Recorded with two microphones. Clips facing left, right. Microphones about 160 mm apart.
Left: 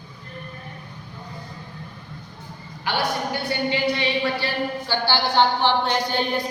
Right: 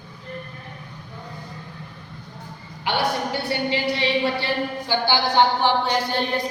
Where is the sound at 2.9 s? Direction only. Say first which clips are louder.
Right 1 dB; 25° right (ahead or behind).